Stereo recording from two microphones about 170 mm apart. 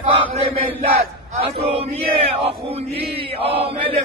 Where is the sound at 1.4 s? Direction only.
35° right (ahead or behind).